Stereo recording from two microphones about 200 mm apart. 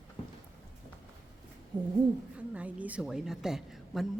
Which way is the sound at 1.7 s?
20° right (ahead or behind).